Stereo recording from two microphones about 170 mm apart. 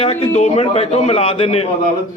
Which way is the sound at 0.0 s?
35° left (ahead or behind).